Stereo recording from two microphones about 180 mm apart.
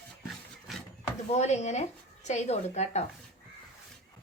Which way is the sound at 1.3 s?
40° left (ahead or behind).